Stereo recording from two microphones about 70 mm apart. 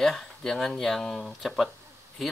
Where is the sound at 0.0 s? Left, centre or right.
Centre.